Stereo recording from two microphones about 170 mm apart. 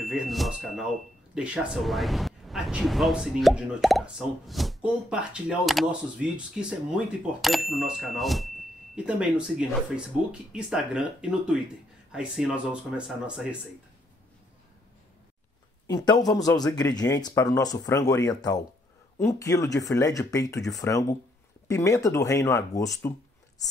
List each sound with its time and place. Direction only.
0.0 s speech: centre (ahead or behind)
15.9 s speech: 20° left (ahead or behind)